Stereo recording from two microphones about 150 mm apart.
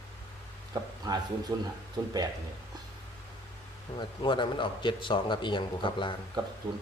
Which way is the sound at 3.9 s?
30° left (ahead or behind).